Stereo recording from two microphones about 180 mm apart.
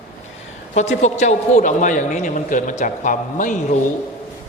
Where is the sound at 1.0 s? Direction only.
40° left (ahead or behind).